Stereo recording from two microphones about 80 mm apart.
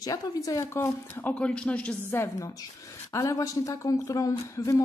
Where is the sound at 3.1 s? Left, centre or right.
Left.